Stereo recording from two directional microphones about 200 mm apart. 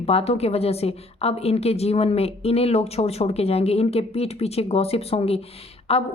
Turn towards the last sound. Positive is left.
turn(degrees=30)  # may be behind; listen again after turning